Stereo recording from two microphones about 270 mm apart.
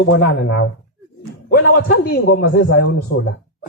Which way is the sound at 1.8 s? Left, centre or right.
Left.